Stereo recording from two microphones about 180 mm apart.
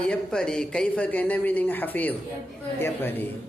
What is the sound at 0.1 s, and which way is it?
A man's voice, 5° left (ahead or behind).